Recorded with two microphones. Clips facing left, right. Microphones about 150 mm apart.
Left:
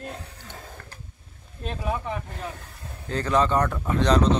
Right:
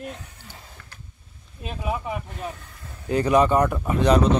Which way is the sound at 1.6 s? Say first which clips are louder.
Even; 5° right (ahead or behind).